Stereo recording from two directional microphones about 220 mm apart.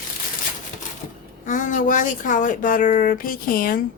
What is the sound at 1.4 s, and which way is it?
Speech, 35° left (ahead or behind).